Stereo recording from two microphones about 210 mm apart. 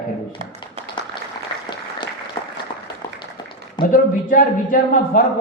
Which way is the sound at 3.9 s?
40° left (ahead or behind).